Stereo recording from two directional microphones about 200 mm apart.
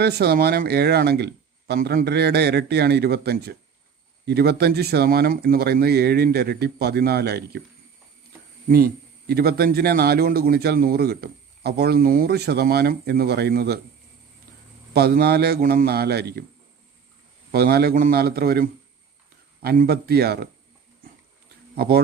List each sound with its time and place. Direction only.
0.0 s a man's voice: 55° right (ahead or behind)
8.6 s a man's voice: 45° right (ahead or behind)
14.9 s a man's voice: 50° right (ahead or behind)
17.5 s a man's voice: 50° right (ahead or behind)
21.8 s a man's voice: 50° right (ahead or behind)